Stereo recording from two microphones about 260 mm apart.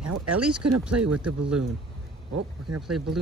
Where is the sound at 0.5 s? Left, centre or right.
Right.